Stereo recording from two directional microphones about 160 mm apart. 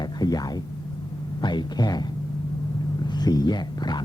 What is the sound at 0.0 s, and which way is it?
Speech, 25° left (ahead or behind).